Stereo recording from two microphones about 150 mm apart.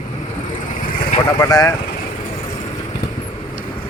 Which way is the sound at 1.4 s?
25° left (ahead or behind).